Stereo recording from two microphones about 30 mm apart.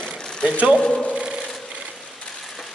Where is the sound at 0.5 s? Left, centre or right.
Right.